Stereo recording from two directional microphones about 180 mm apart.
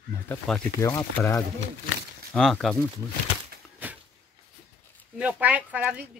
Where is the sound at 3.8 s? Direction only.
10° right (ahead or behind).